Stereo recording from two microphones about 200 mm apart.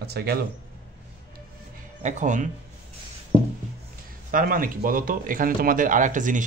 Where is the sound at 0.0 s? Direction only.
55° right (ahead or behind).